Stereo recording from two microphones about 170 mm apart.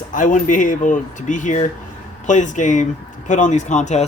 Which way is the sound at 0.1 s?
50° left (ahead or behind).